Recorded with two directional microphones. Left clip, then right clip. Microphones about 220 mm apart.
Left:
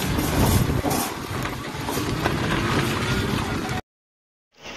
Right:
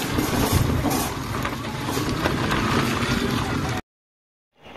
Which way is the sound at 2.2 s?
50° right (ahead or behind).